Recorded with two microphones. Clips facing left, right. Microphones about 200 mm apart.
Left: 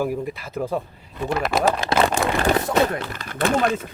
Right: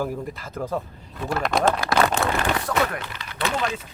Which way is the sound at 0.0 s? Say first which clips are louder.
Left 3 dB; 10° left (ahead or behind).